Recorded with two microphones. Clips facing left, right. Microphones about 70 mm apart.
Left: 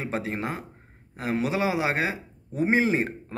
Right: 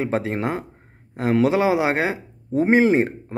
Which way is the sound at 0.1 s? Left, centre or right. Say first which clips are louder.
Right 6 dB; right.